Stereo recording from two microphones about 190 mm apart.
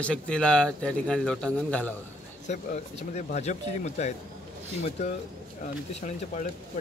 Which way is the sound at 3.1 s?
35° left (ahead or behind).